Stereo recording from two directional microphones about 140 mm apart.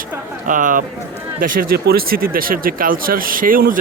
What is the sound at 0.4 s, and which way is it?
Speech, 70° right (ahead or behind).